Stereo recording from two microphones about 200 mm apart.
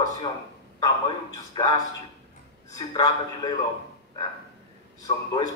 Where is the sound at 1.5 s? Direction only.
20° left (ahead or behind).